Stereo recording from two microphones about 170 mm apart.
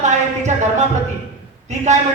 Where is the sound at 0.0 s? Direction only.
45° right (ahead or behind).